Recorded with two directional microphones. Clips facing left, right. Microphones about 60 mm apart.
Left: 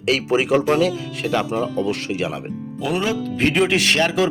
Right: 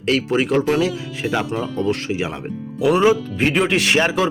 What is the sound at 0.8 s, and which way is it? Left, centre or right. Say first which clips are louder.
Speech: left 1 dB; centre.